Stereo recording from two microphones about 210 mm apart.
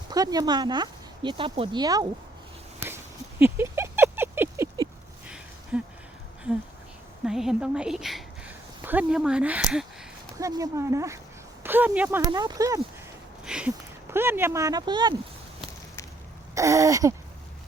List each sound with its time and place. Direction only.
0.1 s speech: 20° right (ahead or behind)
2.8 s a sound: 10° right (ahead or behind)
7.3 s a woman's voice: centre (ahead or behind)
10.4 s speech: 15° right (ahead or behind)
13.4 s speech: 5° right (ahead or behind); by 15.1 s 20° right (ahead or behind)
16.6 s speech: 15° right (ahead or behind)